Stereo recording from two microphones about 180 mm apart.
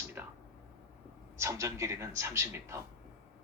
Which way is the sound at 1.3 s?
15° right (ahead or behind).